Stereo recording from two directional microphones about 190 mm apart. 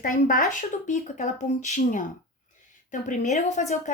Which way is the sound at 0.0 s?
45° left (ahead or behind).